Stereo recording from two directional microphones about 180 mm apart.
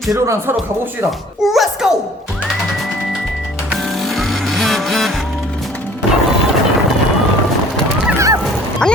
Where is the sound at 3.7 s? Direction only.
Centre (ahead or behind).